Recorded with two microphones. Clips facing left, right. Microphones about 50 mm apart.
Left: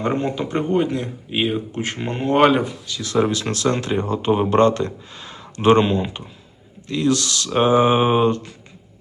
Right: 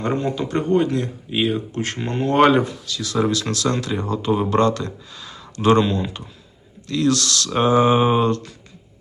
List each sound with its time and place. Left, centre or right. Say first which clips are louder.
0.3 s speech: right 1 dB; centre
2.4 s speech: right 1 dB; centre
2.8 s speech: left 1 dB; left